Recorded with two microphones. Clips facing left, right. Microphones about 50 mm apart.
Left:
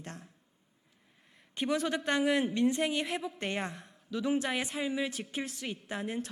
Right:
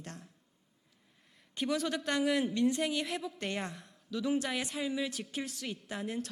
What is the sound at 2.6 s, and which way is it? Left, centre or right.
Speech, left.